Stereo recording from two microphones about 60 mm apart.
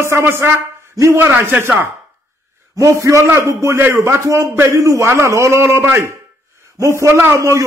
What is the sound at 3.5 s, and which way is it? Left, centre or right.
A man's voice, right.